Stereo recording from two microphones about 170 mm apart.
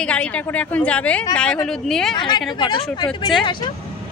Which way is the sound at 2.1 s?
25° left (ahead or behind).